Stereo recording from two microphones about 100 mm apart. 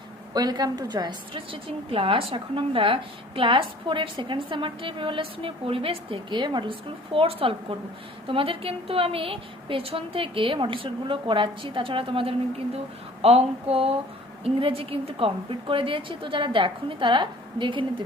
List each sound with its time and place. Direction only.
0.3 s a woman's voice: 40° right (ahead or behind)
1.5 s a woman's voice: 65° right (ahead or behind)
13.2 s a sound: 75° right (ahead or behind)
14.4 s a woman's voice: 65° right (ahead or behind)